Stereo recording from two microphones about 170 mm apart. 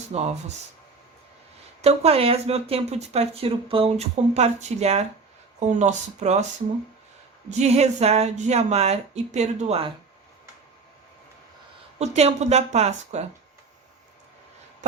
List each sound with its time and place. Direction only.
0.1 s speech: 40° right (ahead or behind)
1.8 s speech: 40° right (ahead or behind)
7.5 s speech: 40° right (ahead or behind)
11.9 s speech: 40° right (ahead or behind)